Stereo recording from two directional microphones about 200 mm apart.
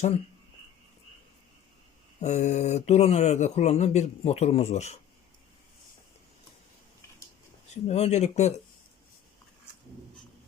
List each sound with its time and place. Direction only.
2.2 s speech: 35° left (ahead or behind)
7.7 s speech: 35° left (ahead or behind)